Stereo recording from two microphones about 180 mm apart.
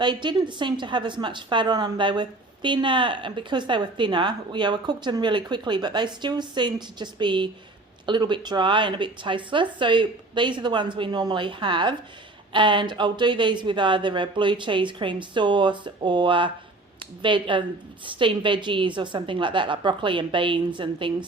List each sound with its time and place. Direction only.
0.0 s a woman's voice: 25° right (ahead or behind)